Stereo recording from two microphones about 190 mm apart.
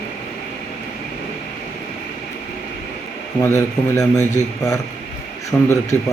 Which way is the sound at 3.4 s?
15° left (ahead or behind).